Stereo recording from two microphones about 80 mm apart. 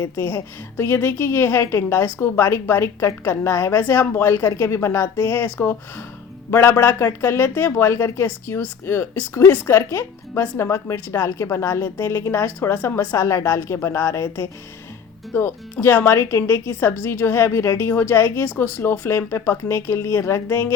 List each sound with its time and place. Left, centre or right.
0.8 s a woman's voice: left
6.5 s a woman's voice: left
13.1 s a woman's voice: left